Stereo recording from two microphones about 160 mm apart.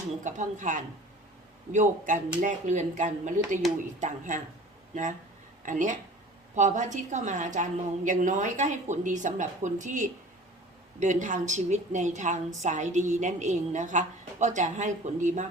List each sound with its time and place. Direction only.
0.3 s a woman's voice: 50° right (ahead or behind)
5.6 s a woman's voice: 55° right (ahead or behind)